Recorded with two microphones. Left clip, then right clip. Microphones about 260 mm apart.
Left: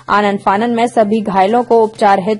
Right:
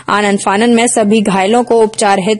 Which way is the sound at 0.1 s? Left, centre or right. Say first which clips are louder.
Even; right.